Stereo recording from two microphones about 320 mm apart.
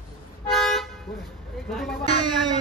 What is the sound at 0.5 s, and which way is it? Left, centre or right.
Toot, centre.